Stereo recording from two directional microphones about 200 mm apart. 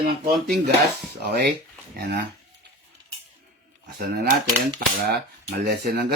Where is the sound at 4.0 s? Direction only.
50° right (ahead or behind).